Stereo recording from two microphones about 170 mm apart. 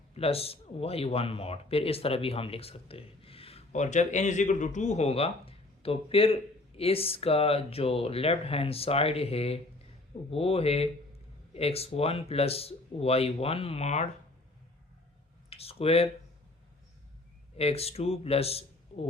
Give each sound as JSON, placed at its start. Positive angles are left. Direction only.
{"t": 0.2, "sound": "speech", "side_deg": 35}
{"t": 15.4, "sound": "speech", "side_deg": 35}
{"t": 17.6, "sound": "a woman's voice", "side_deg": 35}